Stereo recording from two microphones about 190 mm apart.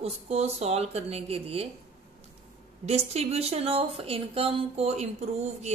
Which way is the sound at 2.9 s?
35° right (ahead or behind).